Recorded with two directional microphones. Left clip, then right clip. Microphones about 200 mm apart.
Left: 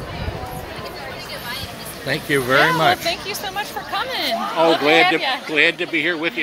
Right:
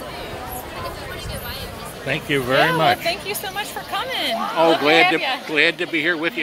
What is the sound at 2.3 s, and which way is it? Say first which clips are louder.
Speech: left 2 dB; centre (ahead or behind).